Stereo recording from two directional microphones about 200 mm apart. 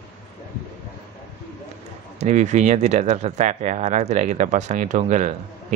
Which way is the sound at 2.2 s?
35° right (ahead or behind).